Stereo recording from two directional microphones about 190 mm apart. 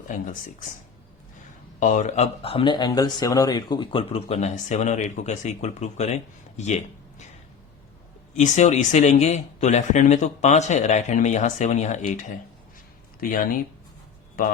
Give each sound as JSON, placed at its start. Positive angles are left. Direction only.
{"t": 1.8, "sound": "speech", "side_deg": 40}
{"t": 8.4, "sound": "speech", "side_deg": 40}
{"t": 13.3, "sound": "speech", "side_deg": 45}